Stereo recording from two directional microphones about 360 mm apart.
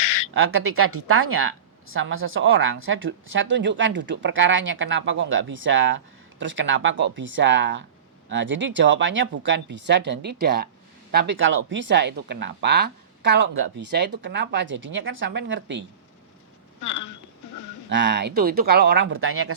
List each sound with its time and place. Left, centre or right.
0.3 s speech: right
16.8 s speech: left
17.8 s speech: right